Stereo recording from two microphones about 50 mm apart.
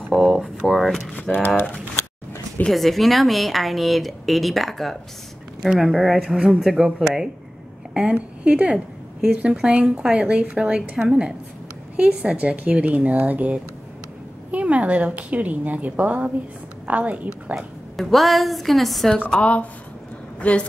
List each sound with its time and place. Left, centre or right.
0.1 s a sound: centre
1.1 s a sound: left
2.7 s a woman's voice: centre
5.7 s a woman's voice: centre; by 17.3 s right
17.9 s a woman's voice: centre
19.3 s speech: left